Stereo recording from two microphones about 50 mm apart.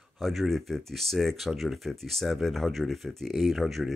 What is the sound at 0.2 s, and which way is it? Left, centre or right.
Speech, centre.